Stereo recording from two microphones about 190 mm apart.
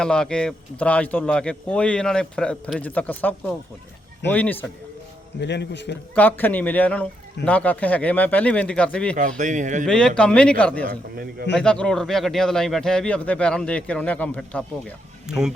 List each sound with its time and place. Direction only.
0.0 s speech: 5° left (ahead or behind)
5.4 s a man's voice: 65° left (ahead or behind)
6.1 s speech: 10° left (ahead or behind)
9.4 s speech: 40° right (ahead or behind)
9.8 s speech: 5° left (ahead or behind)